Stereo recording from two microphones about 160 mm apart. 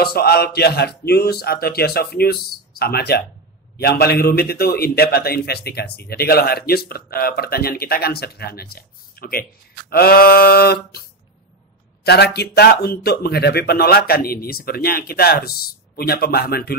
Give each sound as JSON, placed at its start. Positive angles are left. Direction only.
{"t": 0.0, "sound": "a man's voice", "side_deg": 75}
{"t": 2.8, "sound": "speech", "side_deg": 90}
{"t": 3.7, "sound": "a man's voice", "side_deg": 80}
{"t": 12.0, "sound": "a man's voice", "side_deg": 90}